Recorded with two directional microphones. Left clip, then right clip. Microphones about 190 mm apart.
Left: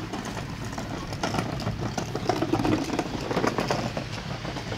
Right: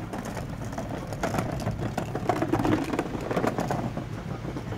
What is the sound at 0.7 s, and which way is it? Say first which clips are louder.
Vehicle: right 1 dB; centre (ahead or behind).